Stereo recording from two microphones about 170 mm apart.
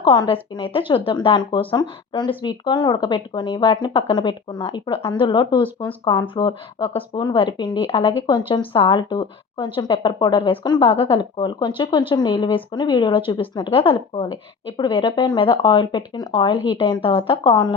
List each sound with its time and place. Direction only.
0.0 s a woman's voice: 30° left (ahead or behind)